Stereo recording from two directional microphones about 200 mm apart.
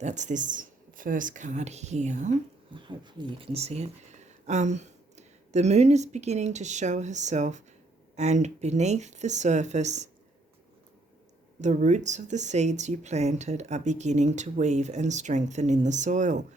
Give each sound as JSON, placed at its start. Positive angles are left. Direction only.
{"t": 0.0, "sound": "speech", "side_deg": -35}
{"t": 2.7, "sound": "speech", "side_deg": -25}
{"t": 11.6, "sound": "speech", "side_deg": -35}